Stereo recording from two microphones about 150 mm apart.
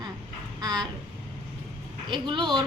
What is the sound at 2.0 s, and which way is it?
Speech, 30° right (ahead or behind).